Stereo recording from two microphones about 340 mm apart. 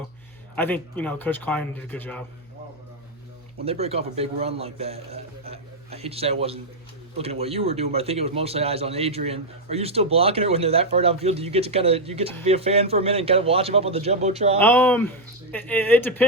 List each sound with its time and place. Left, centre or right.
0.5 s speech: centre
3.6 s a man's voice: centre
14.6 s speech: centre